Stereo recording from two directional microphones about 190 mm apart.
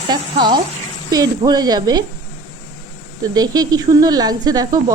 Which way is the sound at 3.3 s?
20° right (ahead or behind).